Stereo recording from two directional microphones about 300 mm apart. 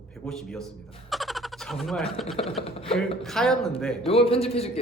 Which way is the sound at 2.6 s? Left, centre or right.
Centre.